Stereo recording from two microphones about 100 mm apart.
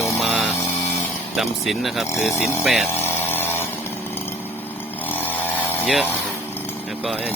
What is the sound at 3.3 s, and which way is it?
Chainsaw, 20° left (ahead or behind).